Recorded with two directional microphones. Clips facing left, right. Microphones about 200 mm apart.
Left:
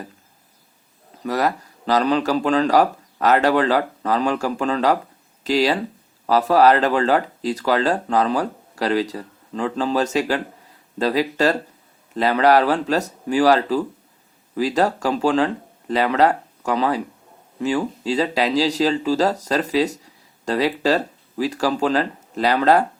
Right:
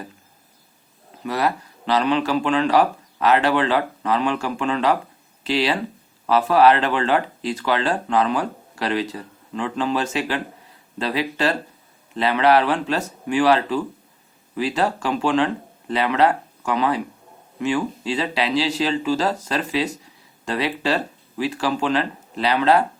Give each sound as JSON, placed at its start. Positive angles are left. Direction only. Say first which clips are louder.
{"t": 1.2, "sound": "speech", "louder": "left 1 dB", "side_deg": 40}